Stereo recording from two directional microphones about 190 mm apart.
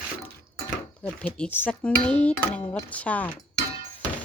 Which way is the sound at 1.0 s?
10° left (ahead or behind).